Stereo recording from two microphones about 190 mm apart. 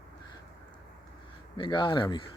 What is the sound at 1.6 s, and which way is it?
Speech, 25° left (ahead or behind).